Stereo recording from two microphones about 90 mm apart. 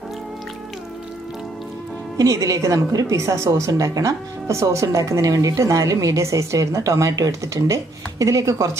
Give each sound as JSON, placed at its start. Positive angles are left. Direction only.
{"t": 2.1, "sound": "a woman's voice", "side_deg": -40}